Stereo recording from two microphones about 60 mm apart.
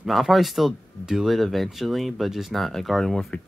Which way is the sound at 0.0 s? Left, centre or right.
Centre.